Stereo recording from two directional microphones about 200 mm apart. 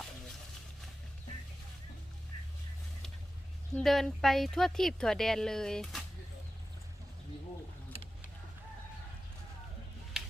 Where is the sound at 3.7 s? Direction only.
Centre (ahead or behind).